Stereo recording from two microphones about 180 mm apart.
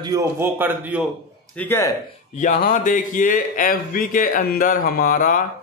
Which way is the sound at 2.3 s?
45° left (ahead or behind).